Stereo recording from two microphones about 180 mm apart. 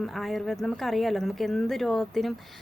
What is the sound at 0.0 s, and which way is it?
A woman's voice, centre (ahead or behind).